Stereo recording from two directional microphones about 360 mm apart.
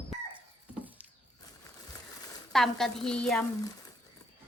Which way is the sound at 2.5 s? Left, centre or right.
Centre.